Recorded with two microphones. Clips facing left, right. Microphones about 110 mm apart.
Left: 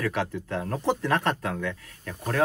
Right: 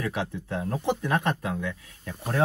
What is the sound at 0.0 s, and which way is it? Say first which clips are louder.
Speech: left 2 dB; 15° right (ahead or behind).